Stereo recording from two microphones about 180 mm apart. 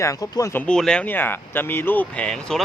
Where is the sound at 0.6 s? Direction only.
5° left (ahead or behind).